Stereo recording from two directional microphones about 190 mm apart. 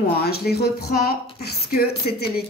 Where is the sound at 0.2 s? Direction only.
55° left (ahead or behind).